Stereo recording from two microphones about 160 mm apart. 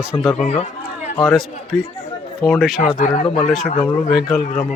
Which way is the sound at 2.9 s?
45° left (ahead or behind).